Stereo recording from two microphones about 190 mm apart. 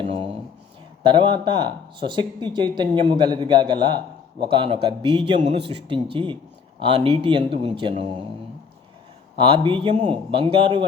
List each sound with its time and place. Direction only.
0.0 s a sound: 30° right (ahead or behind)
1.0 s speech: 25° right (ahead or behind)
5.4 s speech: 35° right (ahead or behind)
5.9 s speech: 25° right (ahead or behind)
9.4 s speech: 25° right (ahead or behind)